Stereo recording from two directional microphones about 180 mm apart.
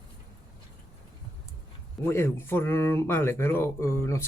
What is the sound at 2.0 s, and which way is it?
Speech, 15° left (ahead or behind).